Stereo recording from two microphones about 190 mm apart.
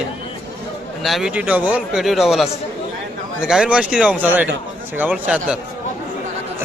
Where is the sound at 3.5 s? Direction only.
5° right (ahead or behind).